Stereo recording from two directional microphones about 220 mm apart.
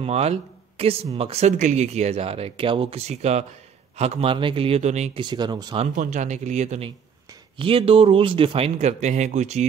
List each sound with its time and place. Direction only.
0.0 s speech: 30° right (ahead or behind)
5.9 s speech: 35° right (ahead or behind)